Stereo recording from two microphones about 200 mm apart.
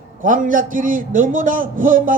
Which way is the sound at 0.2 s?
40° right (ahead or behind).